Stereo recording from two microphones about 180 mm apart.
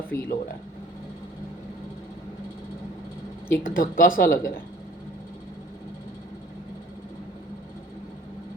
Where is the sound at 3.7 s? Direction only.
50° left (ahead or behind).